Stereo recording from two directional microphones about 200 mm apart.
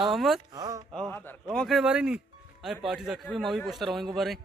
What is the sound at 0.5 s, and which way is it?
Speech, 20° right (ahead or behind).